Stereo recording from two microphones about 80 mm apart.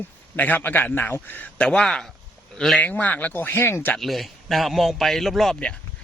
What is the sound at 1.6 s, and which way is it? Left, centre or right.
Speech, centre.